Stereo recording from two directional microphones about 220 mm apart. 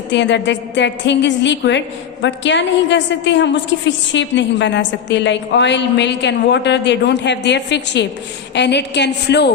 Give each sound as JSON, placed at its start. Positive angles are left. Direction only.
{"t": 0.1, "sound": "a woman's voice", "side_deg": 55}